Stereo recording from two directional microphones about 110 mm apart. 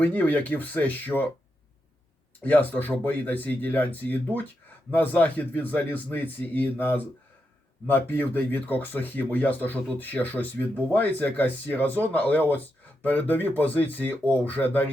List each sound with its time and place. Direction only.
0.0 s speech: 15° left (ahead or behind)
2.4 s speech: 15° left (ahead or behind)